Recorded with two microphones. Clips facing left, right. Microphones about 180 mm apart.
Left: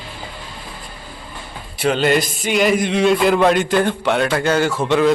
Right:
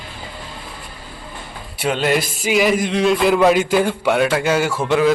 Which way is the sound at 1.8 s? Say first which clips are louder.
Left 2 dB; centre (ahead or behind).